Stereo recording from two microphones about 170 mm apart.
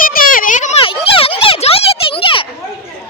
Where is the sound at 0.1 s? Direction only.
55° left (ahead or behind).